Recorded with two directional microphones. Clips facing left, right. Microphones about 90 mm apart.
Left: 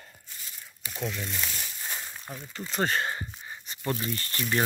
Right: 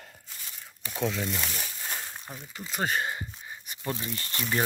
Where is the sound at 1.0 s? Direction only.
80° right.